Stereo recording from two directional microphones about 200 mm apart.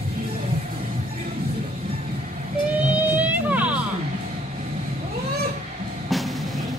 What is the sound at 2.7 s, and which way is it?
Music, 10° right (ahead or behind).